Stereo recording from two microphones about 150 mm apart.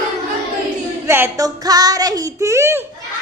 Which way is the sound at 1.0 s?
15° right (ahead or behind).